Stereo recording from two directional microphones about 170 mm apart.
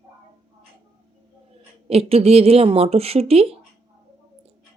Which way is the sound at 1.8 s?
35° right (ahead or behind).